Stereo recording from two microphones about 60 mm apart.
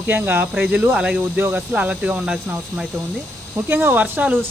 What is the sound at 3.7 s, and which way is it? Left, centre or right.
Speech, right.